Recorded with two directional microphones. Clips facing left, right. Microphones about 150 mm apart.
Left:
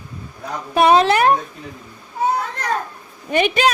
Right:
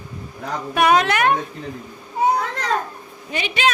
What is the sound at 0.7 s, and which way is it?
Speech, 30° left (ahead or behind).